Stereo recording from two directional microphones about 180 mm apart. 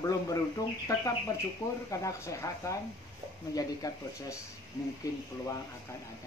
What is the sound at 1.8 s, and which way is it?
Speech, 15° left (ahead or behind).